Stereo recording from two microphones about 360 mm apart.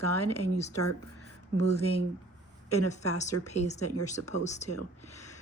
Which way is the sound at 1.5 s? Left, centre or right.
Right.